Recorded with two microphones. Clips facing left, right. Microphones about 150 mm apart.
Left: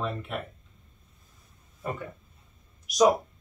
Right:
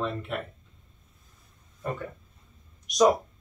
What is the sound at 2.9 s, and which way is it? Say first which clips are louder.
Speech: even; centre (ahead or behind).